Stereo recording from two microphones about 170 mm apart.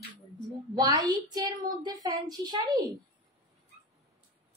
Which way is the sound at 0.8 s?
20° right (ahead or behind).